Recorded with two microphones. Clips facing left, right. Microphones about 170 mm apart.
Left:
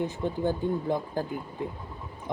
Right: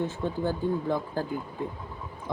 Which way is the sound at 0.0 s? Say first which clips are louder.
Left 1 dB; 15° left (ahead or behind).